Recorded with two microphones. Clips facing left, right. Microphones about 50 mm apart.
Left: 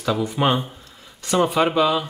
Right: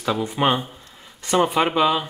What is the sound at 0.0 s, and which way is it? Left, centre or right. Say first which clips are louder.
Speech: left 1 dB; centre.